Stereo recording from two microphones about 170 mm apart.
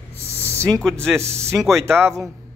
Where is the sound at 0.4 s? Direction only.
15° right (ahead or behind).